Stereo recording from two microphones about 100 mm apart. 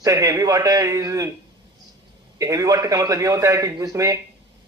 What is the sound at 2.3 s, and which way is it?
A man's voice, 35° right (ahead or behind).